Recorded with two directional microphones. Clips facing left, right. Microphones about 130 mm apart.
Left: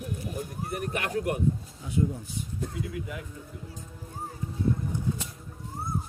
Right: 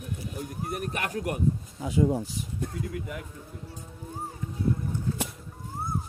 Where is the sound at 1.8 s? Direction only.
90° right.